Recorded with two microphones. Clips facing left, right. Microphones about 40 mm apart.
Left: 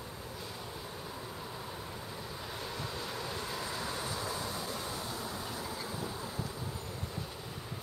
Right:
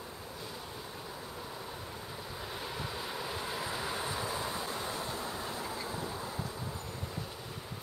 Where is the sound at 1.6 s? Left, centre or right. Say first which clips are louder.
Even; centre; by 5.8 s right.